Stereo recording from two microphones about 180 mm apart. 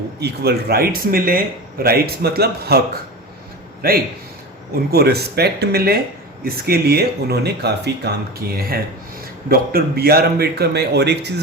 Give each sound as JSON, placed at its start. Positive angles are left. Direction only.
{"t": 0.2, "sound": "speech", "side_deg": -60}
{"t": 4.7, "sound": "speech", "side_deg": -60}